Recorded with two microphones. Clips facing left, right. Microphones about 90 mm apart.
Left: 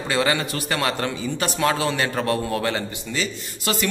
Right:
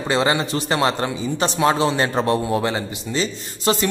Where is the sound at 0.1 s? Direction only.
25° right (ahead or behind).